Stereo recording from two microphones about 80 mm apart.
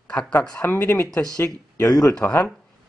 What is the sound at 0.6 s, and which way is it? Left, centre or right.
Speech, left.